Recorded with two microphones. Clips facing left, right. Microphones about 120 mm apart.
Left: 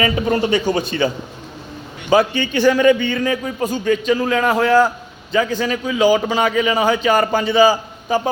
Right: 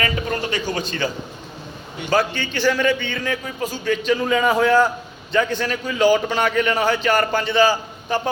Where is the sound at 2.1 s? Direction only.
15° left (ahead or behind).